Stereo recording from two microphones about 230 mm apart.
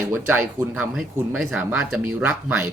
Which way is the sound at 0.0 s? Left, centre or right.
Centre.